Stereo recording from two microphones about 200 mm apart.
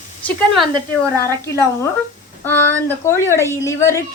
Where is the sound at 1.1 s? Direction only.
15° left (ahead or behind).